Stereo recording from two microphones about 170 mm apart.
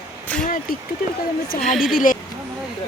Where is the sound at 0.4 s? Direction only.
50° left (ahead or behind).